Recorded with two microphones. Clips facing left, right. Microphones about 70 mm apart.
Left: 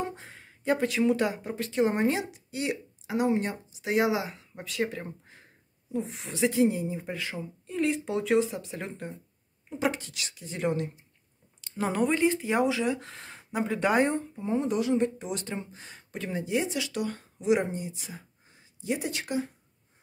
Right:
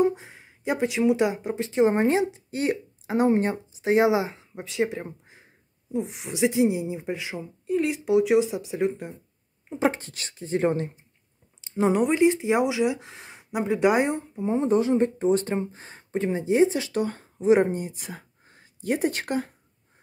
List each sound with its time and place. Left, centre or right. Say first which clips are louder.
0.0 s speech: right 12 dB; centre
7.6 s speech: right 4 dB; centre
9.7 s speech: right 5 dB; right
11.6 s speech: right 5 dB; right